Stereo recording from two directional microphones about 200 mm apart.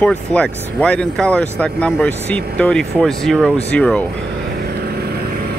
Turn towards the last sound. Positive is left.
turn(degrees=5)  # may be behind; listen again after turning